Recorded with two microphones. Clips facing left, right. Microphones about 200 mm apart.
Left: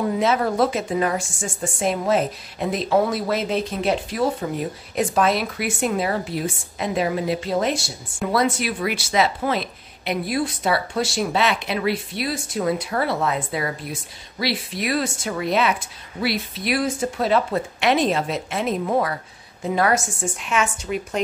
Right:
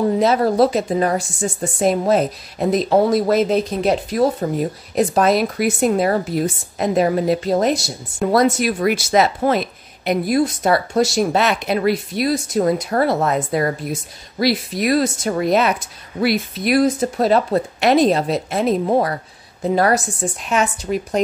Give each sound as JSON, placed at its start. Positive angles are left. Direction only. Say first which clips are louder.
{"t": 0.2, "sound": "a woman's voice", "louder": "right 4 dB", "side_deg": -35}